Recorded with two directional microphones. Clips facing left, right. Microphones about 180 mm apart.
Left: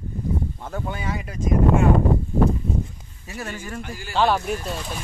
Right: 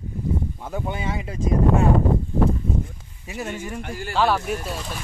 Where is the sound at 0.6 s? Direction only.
15° right (ahead or behind).